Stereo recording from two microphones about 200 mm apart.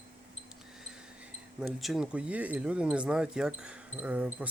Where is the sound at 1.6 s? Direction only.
Centre (ahead or behind).